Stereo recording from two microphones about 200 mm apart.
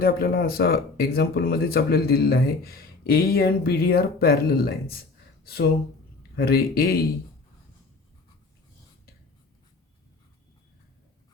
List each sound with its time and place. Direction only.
0.0 s speech: 50° left (ahead or behind)
5.4 s a sound: 50° left (ahead or behind)
6.3 s speech: 50° left (ahead or behind)